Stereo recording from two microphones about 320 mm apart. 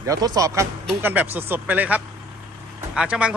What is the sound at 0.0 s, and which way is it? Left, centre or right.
A man's voice, centre.